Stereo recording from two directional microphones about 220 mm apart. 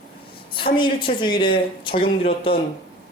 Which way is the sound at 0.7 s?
20° left (ahead or behind).